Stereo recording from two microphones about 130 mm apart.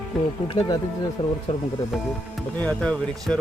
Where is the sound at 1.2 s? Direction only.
40° left (ahead or behind).